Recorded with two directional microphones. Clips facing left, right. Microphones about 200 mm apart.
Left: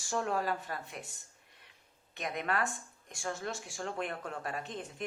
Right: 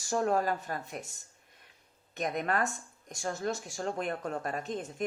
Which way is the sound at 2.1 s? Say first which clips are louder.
Right 4 dB; 45° right (ahead or behind).